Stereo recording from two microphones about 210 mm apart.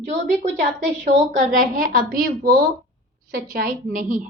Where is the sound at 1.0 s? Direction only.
35° right (ahead or behind).